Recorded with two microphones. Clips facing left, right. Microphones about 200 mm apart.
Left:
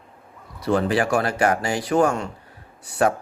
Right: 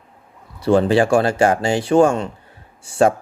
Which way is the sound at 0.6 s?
30° right (ahead or behind).